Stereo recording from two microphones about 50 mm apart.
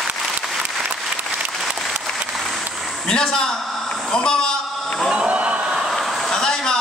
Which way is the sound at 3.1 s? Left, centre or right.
Centre.